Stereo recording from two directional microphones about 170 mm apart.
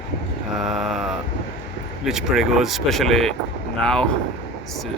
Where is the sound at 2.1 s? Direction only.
Centre (ahead or behind).